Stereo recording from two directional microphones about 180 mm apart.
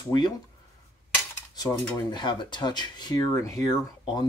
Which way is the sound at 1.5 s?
20° left (ahead or behind).